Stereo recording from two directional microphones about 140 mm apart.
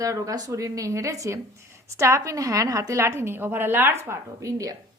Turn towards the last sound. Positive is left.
turn(degrees=-25)  # may be behind; listen again after turning